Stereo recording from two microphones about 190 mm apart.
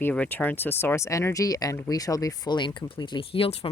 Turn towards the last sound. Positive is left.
turn(degrees=30)  # may be behind; listen again after turning